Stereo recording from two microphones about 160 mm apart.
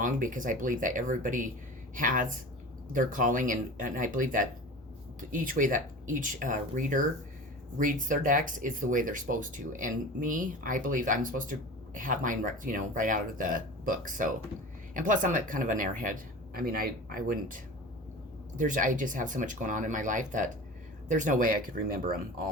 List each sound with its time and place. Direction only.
0.0 s speech: 55° right (ahead or behind)
16.6 s speech: 65° right (ahead or behind)